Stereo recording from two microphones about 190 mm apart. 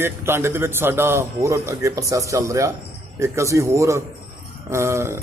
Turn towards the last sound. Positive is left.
turn(degrees=-15)  # may be behind; listen again after turning